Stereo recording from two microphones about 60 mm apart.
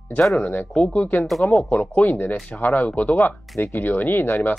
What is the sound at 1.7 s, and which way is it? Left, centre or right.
Speech, left.